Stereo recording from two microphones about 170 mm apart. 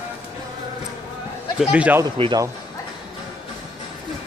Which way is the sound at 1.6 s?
5° right (ahead or behind).